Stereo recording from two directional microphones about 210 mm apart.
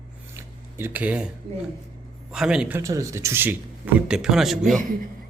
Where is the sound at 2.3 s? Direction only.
5° right (ahead or behind).